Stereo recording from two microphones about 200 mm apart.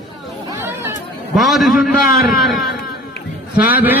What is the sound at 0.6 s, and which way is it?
Chatter, 10° right (ahead or behind).